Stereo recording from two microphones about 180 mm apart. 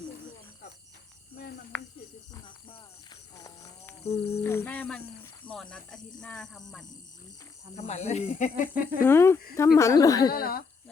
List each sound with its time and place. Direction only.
1.7 s a sound: 5° left (ahead or behind)
2.3 s music: 25° left (ahead or behind)
3.4 s a sound: 20° left (ahead or behind)
4.0 s speech: 35° left (ahead or behind)
4.4 s speech: 15° left (ahead or behind)
7.8 s speech: 40° left (ahead or behind)
9.0 s speech: 15° left (ahead or behind)
10.3 s speech: 55° left (ahead or behind)